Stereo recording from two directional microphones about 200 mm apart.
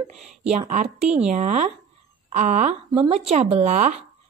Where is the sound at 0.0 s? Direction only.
35° right (ahead or behind).